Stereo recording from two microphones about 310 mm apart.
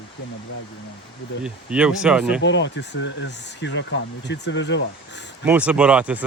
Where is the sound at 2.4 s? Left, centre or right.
Left.